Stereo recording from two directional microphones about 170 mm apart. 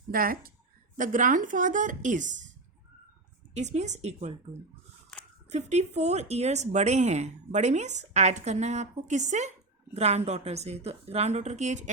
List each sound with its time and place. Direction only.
0.1 s speech: 60° right (ahead or behind)
3.5 s speech: 40° right (ahead or behind)
5.5 s speech: 40° right (ahead or behind)